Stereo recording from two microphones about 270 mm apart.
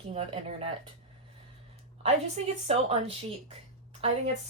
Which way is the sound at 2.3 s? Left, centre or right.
Right.